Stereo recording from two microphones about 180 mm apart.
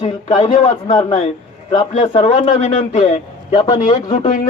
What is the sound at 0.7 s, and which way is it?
Speech, 20° left (ahead or behind).